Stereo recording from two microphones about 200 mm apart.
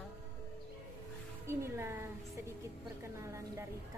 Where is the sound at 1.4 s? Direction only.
15° right (ahead or behind).